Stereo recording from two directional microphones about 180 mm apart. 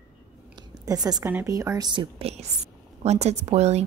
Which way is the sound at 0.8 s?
20° right (ahead or behind).